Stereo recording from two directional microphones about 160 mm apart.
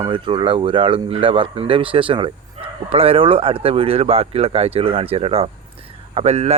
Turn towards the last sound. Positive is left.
turn(degrees=-40)  # may be behind; listen again after turning